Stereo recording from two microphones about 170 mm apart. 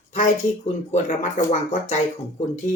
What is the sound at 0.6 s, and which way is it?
Speech, 40° left (ahead or behind).